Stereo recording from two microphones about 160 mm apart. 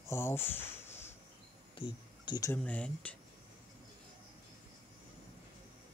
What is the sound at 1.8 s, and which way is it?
Speech, 25° left (ahead or behind).